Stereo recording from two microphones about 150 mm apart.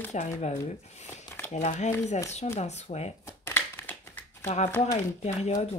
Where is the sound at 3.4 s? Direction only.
15° left (ahead or behind).